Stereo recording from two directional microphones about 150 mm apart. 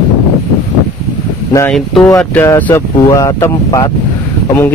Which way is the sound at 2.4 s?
15° left (ahead or behind).